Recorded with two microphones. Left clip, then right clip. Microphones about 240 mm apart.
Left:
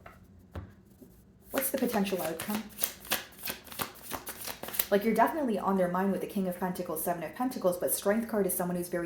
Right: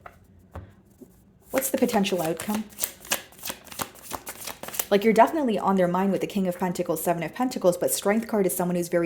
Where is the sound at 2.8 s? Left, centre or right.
Right.